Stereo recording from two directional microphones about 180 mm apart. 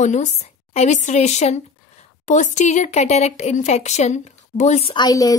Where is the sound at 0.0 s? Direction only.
40° left (ahead or behind).